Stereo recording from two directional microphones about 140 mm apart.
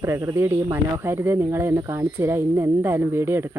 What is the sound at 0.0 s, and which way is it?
Speech, 20° right (ahead or behind).